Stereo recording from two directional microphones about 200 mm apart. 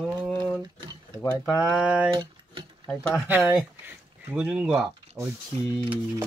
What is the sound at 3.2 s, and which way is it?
Speech, 10° right (ahead or behind).